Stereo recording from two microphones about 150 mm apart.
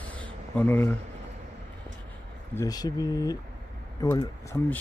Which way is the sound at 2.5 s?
25° left (ahead or behind).